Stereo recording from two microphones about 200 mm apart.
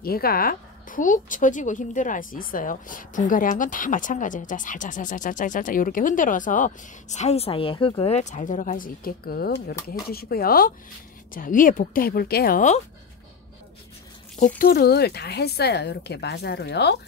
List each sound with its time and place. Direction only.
0.0 s a woman's voice: 50° left (ahead or behind)
14.6 s speech: 50° left (ahead or behind)